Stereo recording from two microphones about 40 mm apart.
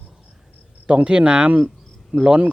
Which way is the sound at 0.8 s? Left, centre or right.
Right.